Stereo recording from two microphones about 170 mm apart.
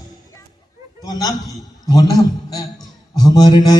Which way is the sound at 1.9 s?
20° left (ahead or behind).